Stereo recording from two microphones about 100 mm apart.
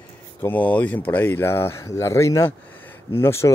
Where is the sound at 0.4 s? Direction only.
20° left (ahead or behind).